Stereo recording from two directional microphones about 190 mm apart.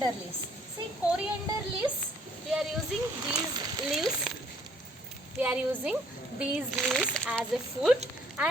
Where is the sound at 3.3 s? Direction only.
20° right (ahead or behind).